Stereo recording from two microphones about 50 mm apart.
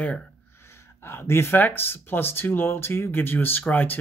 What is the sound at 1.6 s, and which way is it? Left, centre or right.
A man's voice, left.